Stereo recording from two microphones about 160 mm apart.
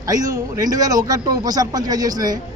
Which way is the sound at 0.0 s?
25° right (ahead or behind).